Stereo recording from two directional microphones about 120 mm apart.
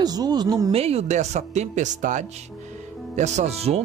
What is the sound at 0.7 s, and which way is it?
Speech, 55° right (ahead or behind).